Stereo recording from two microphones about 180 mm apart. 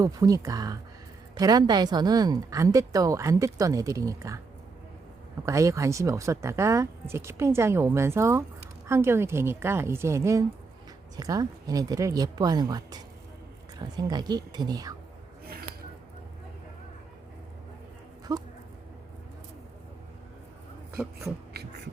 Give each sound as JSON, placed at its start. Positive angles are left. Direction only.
{"t": 0.0, "sound": "a woman's voice", "side_deg": -20}
{"t": 5.5, "sound": "a woman's voice", "side_deg": -15}
{"t": 14.1, "sound": "a woman's voice", "side_deg": -20}
{"t": 18.3, "sound": "a woman's voice", "side_deg": -20}
{"t": 21.5, "sound": "beatboxing", "side_deg": -60}